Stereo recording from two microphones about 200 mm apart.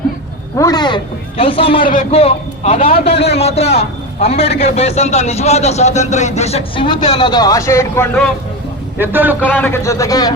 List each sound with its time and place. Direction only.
0.5 s a man's voice: 20° left (ahead or behind)
1.8 s a man's voice: 40° left (ahead or behind); by 8.0 s 15° left (ahead or behind)
9.0 s a man's voice: 10° right (ahead or behind)
9.5 s speech: 10° left (ahead or behind)